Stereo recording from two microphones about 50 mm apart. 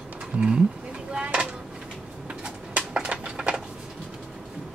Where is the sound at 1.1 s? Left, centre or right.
Right.